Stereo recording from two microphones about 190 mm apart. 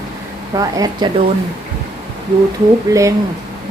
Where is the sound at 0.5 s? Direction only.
20° right (ahead or behind).